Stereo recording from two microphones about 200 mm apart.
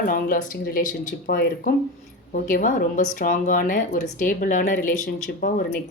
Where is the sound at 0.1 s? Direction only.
45° left (ahead or behind).